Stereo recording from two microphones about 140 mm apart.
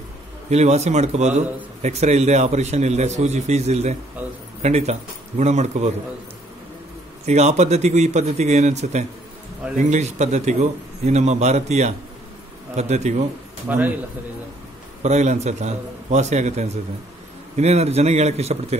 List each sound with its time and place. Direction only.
0.5 s a man's voice: 50° right (ahead or behind)
7.2 s a man's voice: 50° right (ahead or behind)
13.7 s a man's voice: 10° right (ahead or behind)
15.0 s a man's voice: 55° right (ahead or behind)